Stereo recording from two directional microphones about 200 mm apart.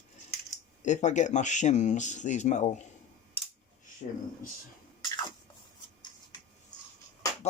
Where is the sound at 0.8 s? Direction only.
35° left (ahead or behind).